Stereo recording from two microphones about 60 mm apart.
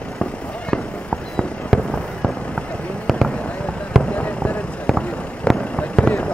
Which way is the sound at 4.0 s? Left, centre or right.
Left.